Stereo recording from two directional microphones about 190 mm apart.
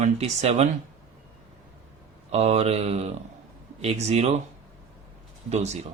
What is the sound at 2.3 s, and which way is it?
Speech, 35° right (ahead or behind).